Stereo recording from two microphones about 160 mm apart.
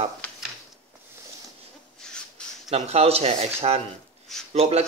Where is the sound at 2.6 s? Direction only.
40° right (ahead or behind).